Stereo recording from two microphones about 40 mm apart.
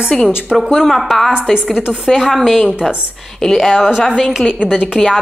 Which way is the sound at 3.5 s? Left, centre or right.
Centre.